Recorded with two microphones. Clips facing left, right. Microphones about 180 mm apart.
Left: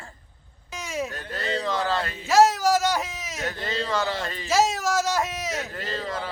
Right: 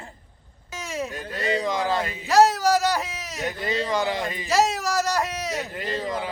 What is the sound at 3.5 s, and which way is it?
Speech, 10° right (ahead or behind).